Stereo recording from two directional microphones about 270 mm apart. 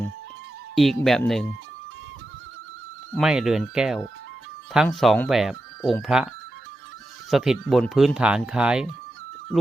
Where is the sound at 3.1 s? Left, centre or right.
Centre.